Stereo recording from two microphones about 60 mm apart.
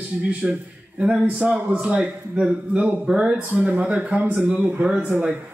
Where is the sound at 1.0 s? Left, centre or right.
Centre.